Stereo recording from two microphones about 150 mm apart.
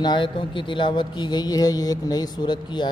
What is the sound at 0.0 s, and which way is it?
Speech, 30° left (ahead or behind).